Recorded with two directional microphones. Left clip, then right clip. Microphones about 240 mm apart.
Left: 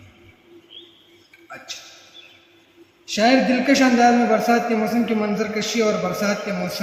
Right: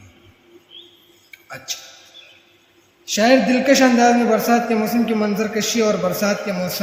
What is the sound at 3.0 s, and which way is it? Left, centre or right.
A man's voice, right.